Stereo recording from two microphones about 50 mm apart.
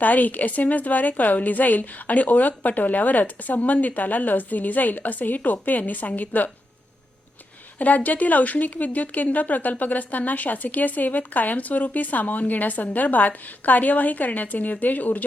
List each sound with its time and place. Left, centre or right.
0.0 s a woman's voice: left
7.8 s a woman's voice: left